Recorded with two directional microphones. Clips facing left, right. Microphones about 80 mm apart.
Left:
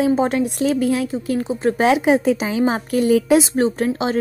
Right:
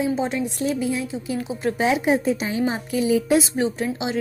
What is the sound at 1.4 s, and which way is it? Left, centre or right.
Speech, left.